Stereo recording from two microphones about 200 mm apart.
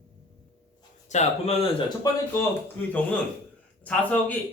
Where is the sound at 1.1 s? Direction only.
35° left (ahead or behind).